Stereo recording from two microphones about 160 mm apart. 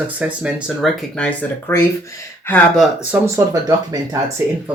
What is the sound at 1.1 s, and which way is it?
Speech, 10° left (ahead or behind).